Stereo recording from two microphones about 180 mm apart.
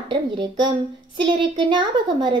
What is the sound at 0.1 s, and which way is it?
A woman's voice, 25° right (ahead or behind).